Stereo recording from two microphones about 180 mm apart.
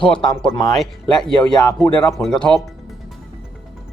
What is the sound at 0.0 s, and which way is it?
Speech, 5° left (ahead or behind).